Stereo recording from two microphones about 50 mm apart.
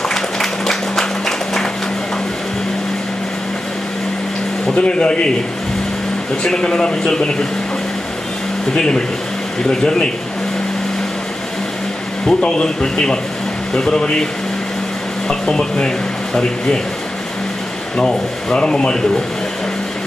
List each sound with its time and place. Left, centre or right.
0.1 s applause: centre
4.6 s speech: centre
6.4 s speech: centre
8.7 s speech: centre
12.3 s speech: centre
15.2 s speech: centre
17.9 s speech: centre